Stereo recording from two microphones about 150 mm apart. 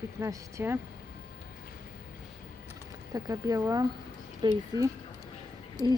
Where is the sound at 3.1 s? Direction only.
25° right (ahead or behind).